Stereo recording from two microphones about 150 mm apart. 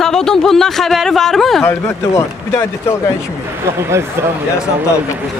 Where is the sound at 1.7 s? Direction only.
15° left (ahead or behind).